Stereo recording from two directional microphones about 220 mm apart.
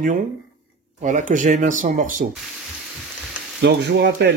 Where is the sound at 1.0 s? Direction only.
35° right (ahead or behind).